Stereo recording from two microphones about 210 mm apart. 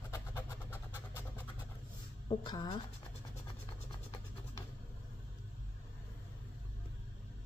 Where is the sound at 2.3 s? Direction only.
25° left (ahead or behind).